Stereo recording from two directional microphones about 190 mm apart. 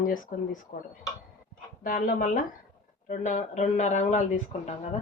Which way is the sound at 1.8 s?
45° left (ahead or behind).